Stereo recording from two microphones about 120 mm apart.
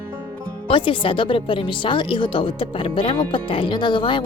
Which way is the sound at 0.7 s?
45° left (ahead or behind).